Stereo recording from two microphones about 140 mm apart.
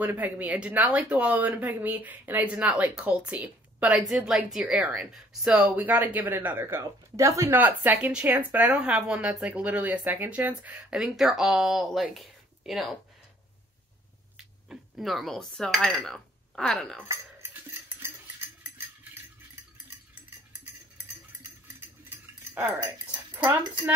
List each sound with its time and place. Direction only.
0.0 s speech: 10° right (ahead or behind)
14.3 s speech: 5° right (ahead or behind)
17.1 s a sound: 20° right (ahead or behind)
22.5 s speech: 15° right (ahead or behind)
23.3 s dog: 20° right (ahead or behind)